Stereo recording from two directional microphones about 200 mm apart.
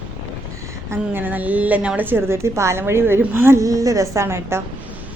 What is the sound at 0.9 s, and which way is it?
A woman's voice, 10° right (ahead or behind).